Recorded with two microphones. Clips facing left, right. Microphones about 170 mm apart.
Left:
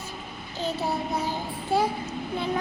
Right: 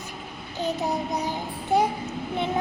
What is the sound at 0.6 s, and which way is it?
Child singing, 15° right (ahead or behind).